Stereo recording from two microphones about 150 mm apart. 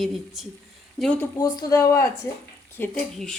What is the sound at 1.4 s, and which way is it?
Speech, 20° left (ahead or behind).